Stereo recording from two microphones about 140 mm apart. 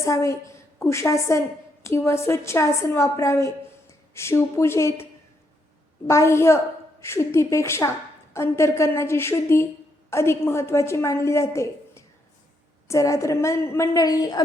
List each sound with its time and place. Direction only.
0.0 s a woman's voice: 20° left (ahead or behind)
6.1 s a woman's voice: 20° left (ahead or behind)